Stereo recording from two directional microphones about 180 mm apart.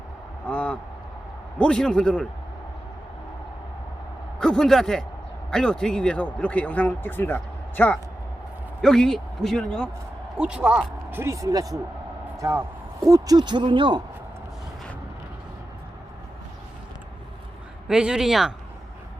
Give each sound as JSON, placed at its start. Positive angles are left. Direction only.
{"t": 0.4, "sound": "vehicle", "side_deg": 5}
{"t": 1.5, "sound": "speech", "side_deg": 5}
{"t": 4.4, "sound": "a man's voice", "side_deg": 5}
{"t": 17.8, "sound": "speech", "side_deg": -5}